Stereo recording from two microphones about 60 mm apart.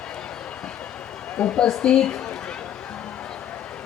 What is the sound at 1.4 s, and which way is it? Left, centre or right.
Speech, centre.